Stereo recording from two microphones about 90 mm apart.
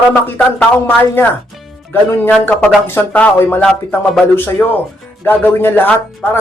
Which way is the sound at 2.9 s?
20° left (ahead or behind).